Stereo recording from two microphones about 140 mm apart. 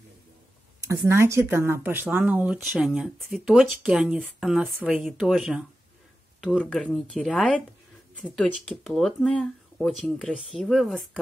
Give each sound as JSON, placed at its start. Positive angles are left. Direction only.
{"t": 0.8, "sound": "speech", "side_deg": -20}